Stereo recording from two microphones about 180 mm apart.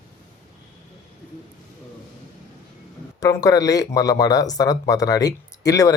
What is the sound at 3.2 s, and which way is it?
Speech, 20° left (ahead or behind).